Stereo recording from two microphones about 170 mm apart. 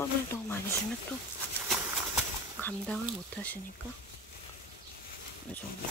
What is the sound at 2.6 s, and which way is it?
Speech, 10° left (ahead or behind).